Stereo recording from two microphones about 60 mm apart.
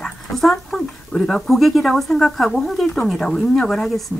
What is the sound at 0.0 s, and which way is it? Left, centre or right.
Speech, centre.